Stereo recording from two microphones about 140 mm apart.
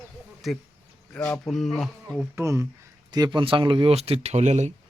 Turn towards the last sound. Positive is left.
turn(degrees=-55)  # may be behind; listen again after turning